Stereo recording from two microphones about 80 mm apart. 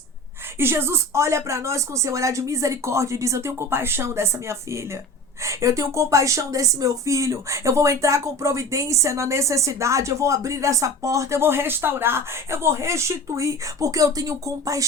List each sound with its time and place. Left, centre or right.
0.6 s speech: right